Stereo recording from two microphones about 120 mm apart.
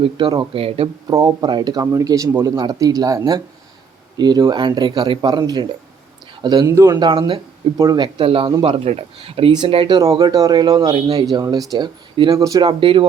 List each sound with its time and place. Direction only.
0.0 s speech: 40° right (ahead or behind)
1.0 s speech: 30° right (ahead or behind)
6.7 s speech: 25° right (ahead or behind)
7.0 s speech: 45° right (ahead or behind)
7.8 s speech: 35° right (ahead or behind)
10.2 s speech: 30° right (ahead or behind)
12.1 s speech: 45° right (ahead or behind)
12.4 s speech: 30° right (ahead or behind)